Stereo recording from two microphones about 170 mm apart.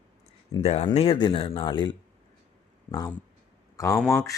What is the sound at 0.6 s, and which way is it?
Speech, 40° left (ahead or behind).